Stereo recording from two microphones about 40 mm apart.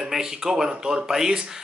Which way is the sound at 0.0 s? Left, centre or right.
Centre.